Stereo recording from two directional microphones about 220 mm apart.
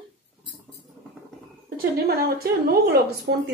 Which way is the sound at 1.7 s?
45° right (ahead or behind).